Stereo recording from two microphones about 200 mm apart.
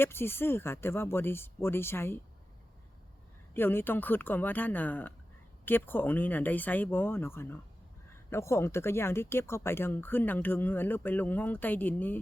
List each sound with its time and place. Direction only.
0.0 s speech: 10° left (ahead or behind)
3.5 s speech: 10° left (ahead or behind)